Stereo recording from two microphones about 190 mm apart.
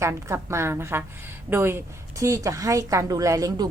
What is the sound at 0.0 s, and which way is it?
A woman's voice, 15° right (ahead or behind).